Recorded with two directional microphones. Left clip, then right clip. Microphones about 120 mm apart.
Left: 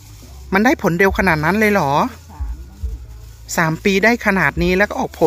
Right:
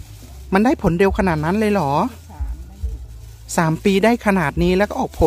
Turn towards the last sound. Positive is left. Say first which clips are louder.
# left 2 dB
turn(degrees=-25)  # may be behind; listen again after turning